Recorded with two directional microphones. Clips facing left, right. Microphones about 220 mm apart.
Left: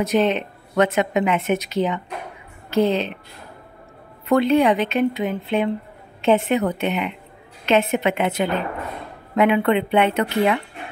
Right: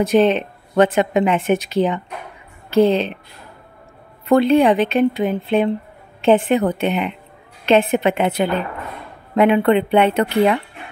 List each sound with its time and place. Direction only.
0.0 s speech: 30° right (ahead or behind)
4.3 s speech: 30° right (ahead or behind)